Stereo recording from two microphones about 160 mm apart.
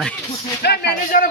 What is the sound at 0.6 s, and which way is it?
Speech, 90° left.